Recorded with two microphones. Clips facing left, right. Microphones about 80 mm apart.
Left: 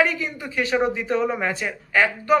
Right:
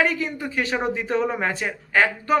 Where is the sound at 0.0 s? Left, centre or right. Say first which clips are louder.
Even; right.